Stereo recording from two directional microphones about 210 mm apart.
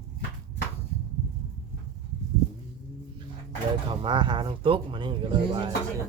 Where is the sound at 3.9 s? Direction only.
20° right (ahead or behind).